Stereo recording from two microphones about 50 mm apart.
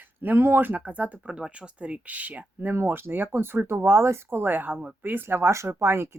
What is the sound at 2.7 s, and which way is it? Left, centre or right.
Speech, right.